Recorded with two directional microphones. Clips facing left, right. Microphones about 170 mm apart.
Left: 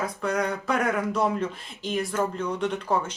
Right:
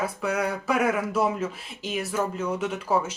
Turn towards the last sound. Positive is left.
turn(degrees=-5)  # may be behind; listen again after turning